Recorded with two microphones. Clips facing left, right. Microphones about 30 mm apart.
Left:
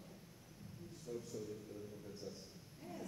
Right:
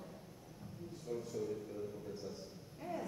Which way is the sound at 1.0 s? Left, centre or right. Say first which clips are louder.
Right 5 dB; centre.